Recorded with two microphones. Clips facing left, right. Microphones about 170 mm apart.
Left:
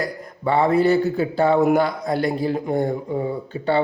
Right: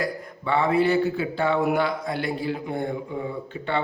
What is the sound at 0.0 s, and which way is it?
A man's voice, 40° left (ahead or behind).